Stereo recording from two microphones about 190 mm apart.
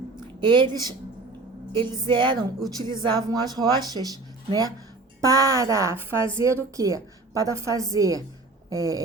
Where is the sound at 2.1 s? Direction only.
25° right (ahead or behind).